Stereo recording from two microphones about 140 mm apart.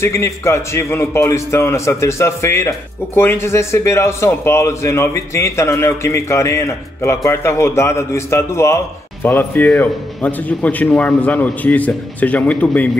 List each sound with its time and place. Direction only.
0.0 s a man's voice: 20° left (ahead or behind)